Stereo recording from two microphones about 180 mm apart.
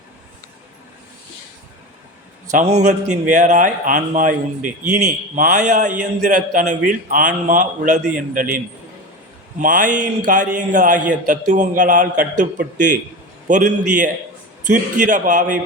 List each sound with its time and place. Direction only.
2.5 s a man's voice: 45° right (ahead or behind)